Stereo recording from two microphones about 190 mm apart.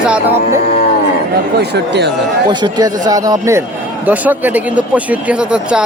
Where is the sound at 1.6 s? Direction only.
60° right (ahead or behind).